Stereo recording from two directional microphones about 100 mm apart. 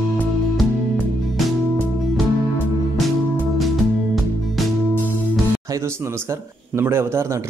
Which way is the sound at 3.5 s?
Centre (ahead or behind).